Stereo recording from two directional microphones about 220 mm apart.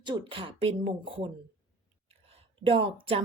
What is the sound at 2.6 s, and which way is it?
Speech, 25° right (ahead or behind).